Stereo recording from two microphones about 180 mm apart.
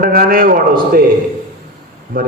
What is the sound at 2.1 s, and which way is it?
Speech, 50° right (ahead or behind).